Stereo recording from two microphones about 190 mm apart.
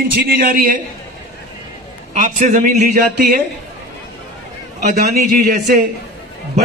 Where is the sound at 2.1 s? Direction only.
45° right (ahead or behind).